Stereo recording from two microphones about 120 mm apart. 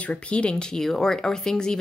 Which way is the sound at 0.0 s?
10° left (ahead or behind).